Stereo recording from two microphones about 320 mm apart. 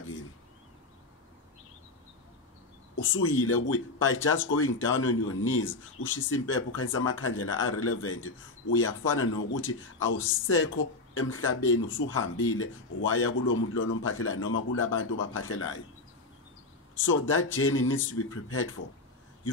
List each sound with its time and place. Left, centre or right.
3.2 s speech: left
17.0 s speech: left